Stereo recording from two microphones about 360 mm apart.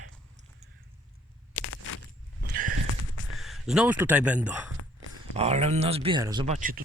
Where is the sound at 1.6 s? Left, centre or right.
Left.